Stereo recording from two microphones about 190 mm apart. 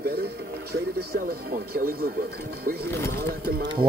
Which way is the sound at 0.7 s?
55° right (ahead or behind).